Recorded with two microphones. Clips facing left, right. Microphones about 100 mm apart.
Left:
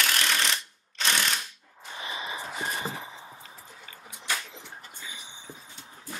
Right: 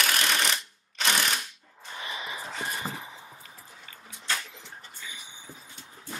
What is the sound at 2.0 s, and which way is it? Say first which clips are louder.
Gasp: left 1 dB; 25° left (ahead or behind).